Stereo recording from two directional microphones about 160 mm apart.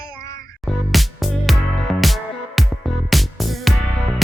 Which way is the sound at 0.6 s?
Centre (ahead or behind).